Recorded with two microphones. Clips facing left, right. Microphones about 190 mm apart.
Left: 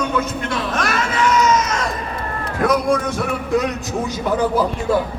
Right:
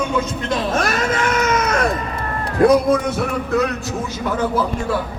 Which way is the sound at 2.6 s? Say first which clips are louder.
Right 5 dB; 30° right (ahead or behind).